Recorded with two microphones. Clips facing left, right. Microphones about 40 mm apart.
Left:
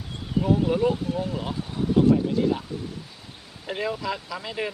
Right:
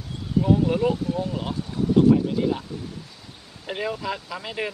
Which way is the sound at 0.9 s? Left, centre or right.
Centre.